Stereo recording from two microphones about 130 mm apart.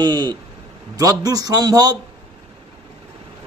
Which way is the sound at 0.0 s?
30° right (ahead or behind).